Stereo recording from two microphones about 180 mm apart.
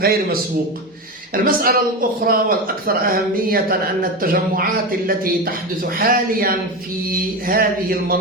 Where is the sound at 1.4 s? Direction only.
55° right (ahead or behind).